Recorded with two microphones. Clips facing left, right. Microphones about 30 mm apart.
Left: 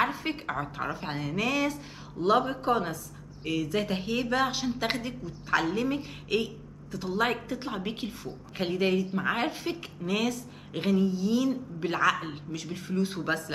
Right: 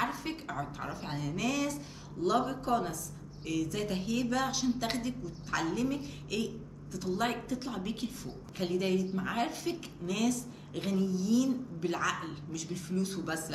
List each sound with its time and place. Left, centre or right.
0.0 s a woman's voice: left